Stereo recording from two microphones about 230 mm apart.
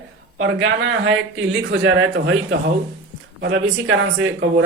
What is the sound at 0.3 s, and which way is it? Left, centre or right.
A man's voice, right.